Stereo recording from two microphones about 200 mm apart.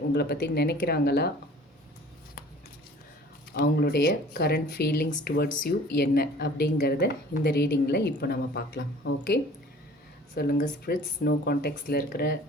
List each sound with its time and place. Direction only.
0.1 s speech: 55° left (ahead or behind)
3.5 s speech: 50° left (ahead or behind)